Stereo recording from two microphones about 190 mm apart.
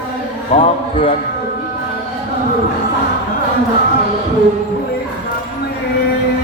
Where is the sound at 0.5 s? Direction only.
30° left (ahead or behind).